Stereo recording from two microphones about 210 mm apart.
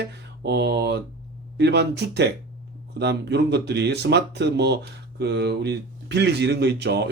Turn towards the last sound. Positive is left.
turn(degrees=-55)  # may be behind; listen again after turning